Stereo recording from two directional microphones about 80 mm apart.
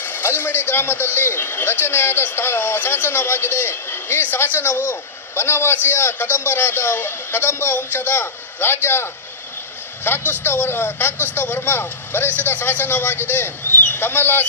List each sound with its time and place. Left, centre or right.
0.0 s a man's voice: left